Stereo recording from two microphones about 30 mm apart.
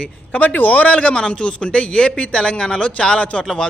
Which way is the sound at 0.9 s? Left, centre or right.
Left.